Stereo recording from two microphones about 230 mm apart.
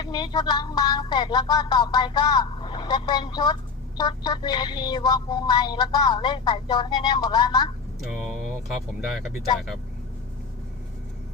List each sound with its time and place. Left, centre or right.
0.0 s speech: centre